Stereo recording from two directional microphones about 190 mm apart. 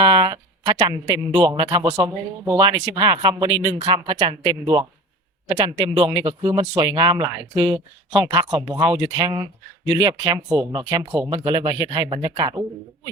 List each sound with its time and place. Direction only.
0.0 s a man's voice: 20° right (ahead or behind)